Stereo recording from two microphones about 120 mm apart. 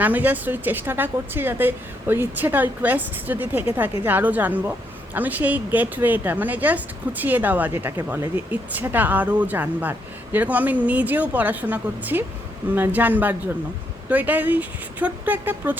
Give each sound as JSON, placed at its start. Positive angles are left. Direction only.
{"t": 0.0, "sound": "a woman's voice", "side_deg": -15}